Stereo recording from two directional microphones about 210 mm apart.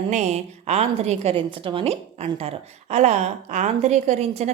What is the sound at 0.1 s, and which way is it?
A woman's voice, 35° right (ahead or behind).